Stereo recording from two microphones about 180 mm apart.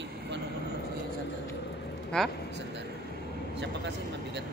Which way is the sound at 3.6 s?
70° right (ahead or behind).